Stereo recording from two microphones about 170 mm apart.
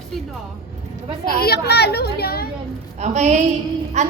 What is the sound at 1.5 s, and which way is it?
Speech, 70° left (ahead or behind).